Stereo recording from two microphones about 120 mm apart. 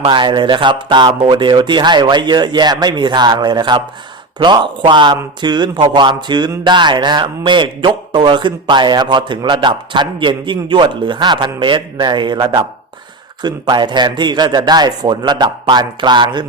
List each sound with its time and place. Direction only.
0.0 s a man's voice: 40° right (ahead or behind)